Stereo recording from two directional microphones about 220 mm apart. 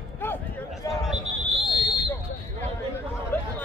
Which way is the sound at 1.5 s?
25° right (ahead or behind).